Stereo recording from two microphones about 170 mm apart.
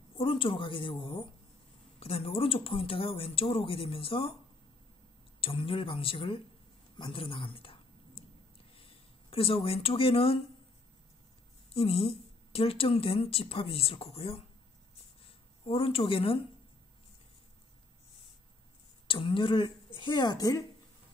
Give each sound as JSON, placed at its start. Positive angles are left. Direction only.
{"t": 0.2, "sound": "speech", "side_deg": 30}
{"t": 5.4, "sound": "speech", "side_deg": 30}
{"t": 7.0, "sound": "a sound", "side_deg": 30}
{"t": 8.7, "sound": "speech", "side_deg": 35}
{"t": 11.7, "sound": "speech", "side_deg": 35}
{"t": 19.0, "sound": "a woman's voice", "side_deg": 30}